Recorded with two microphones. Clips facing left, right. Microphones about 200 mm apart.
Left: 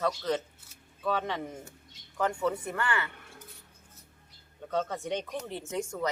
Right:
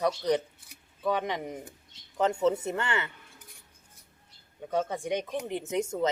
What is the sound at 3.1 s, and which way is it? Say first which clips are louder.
Keys jangling: left 4 dB; 60° left (ahead or behind).